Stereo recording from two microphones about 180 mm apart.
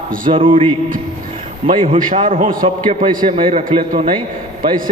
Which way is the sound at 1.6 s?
30° right (ahead or behind).